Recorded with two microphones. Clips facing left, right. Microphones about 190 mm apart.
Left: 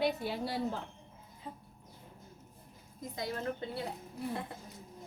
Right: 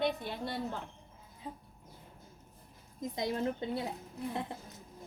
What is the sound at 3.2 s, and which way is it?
Speech, 20° right (ahead or behind).